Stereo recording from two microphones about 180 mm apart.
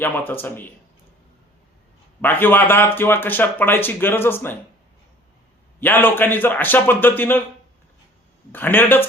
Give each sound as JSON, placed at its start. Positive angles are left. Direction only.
{"t": 0.0, "sound": "speech", "side_deg": 10}
{"t": 2.2, "sound": "speech", "side_deg": 10}
{"t": 5.8, "sound": "speech", "side_deg": 10}
{"t": 8.5, "sound": "speech", "side_deg": 10}